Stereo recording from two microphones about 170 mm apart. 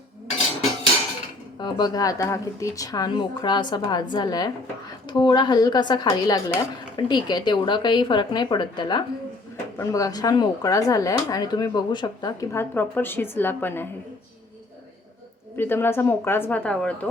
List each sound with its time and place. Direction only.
1.5 s speech: 25° left (ahead or behind)
15.5 s a woman's voice: 15° left (ahead or behind)